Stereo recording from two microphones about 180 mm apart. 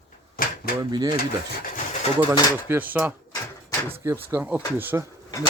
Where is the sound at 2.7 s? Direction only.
10° right (ahead or behind).